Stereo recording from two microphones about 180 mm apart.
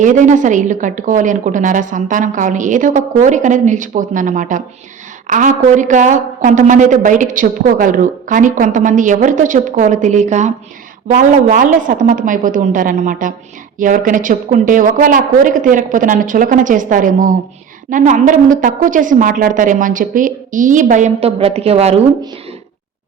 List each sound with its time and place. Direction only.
0.0 s a woman's voice: 45° right (ahead or behind)